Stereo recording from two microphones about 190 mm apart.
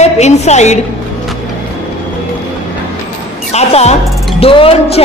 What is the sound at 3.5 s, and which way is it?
A woman's voice, 35° left (ahead or behind).